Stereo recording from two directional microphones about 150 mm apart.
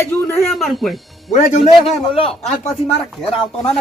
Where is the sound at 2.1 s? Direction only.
40° left (ahead or behind).